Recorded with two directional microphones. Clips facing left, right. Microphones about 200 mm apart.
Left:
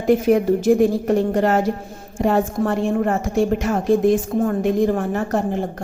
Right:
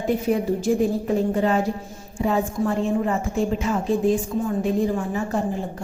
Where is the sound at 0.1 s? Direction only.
85° left.